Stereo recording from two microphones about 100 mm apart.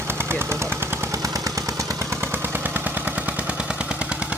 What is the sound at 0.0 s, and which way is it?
Machine gun, 25° right (ahead or behind).